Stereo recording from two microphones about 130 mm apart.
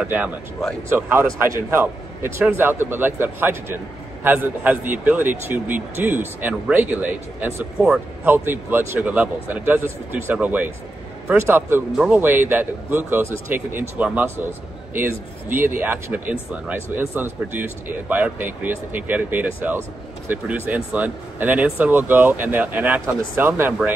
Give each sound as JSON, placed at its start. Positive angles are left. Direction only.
{"t": 0.0, "sound": "speech", "side_deg": -15}